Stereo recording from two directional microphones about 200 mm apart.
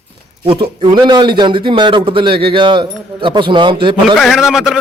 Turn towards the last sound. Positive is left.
turn(degrees=0)  # may be behind; listen again after turning